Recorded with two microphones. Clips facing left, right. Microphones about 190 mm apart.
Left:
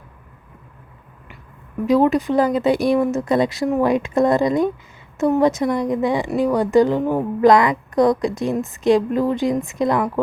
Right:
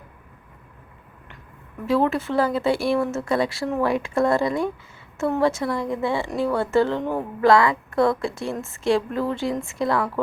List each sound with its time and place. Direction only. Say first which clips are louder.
1.9 s speech: left 5 dB; 15° left (ahead or behind)